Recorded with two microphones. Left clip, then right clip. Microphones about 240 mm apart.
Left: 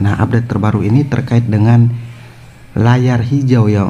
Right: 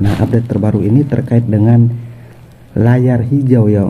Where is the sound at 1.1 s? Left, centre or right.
Centre.